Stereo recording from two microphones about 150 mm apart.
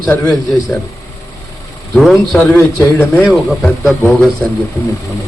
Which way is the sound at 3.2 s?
Centre (ahead or behind).